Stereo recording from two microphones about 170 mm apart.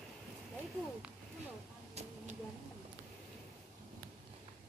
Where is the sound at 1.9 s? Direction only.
40° right (ahead or behind).